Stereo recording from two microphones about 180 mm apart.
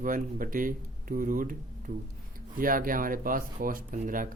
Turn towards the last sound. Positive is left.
turn(degrees=-50)  # may be behind; listen again after turning